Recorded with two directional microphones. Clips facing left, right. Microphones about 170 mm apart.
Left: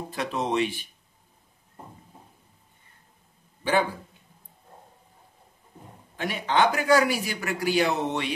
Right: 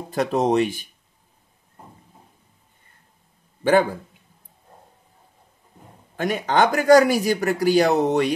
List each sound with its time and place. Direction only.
0.1 s speech: 45° right (ahead or behind)
6.1 s speech: 45° right (ahead or behind)